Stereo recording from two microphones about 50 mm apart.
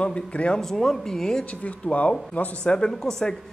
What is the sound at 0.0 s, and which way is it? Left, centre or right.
Speech, left.